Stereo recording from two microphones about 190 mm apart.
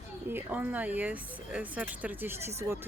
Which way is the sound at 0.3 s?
10° right (ahead or behind).